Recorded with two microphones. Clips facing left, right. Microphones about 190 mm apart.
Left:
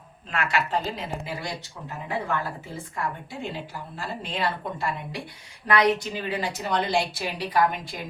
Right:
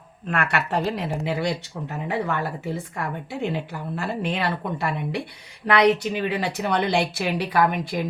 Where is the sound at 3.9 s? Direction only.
65° right (ahead or behind).